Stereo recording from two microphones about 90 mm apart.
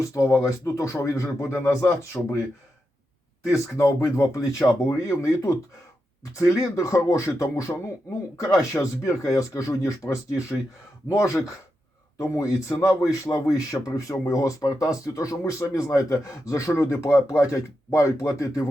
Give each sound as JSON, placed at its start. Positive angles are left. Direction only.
{"t": 0.0, "sound": "a man's voice", "side_deg": 35}
{"t": 3.5, "sound": "a man's voice", "side_deg": 35}
{"t": 6.6, "sound": "a man's voice", "side_deg": 35}